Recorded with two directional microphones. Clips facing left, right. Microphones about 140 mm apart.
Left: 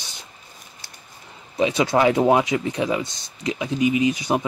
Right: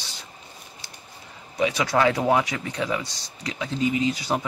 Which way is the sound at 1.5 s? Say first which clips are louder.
Left 3 dB; 25° left (ahead or behind).